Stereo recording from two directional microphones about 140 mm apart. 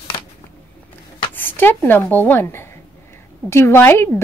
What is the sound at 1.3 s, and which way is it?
A woman's voice, 15° left (ahead or behind).